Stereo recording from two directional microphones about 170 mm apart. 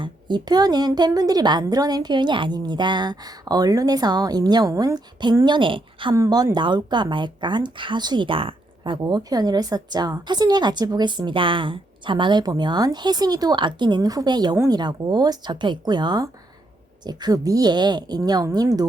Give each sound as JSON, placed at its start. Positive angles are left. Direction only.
{"t": 0.0, "sound": "speech", "side_deg": -25}
{"t": 6.1, "sound": "speech", "side_deg": -20}